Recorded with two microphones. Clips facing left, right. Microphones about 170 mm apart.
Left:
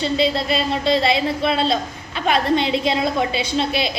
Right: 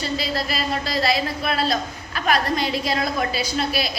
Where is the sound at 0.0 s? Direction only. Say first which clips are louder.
Left 6 dB; 25° left (ahead or behind).